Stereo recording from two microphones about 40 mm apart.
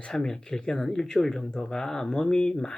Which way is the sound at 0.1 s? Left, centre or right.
Centre.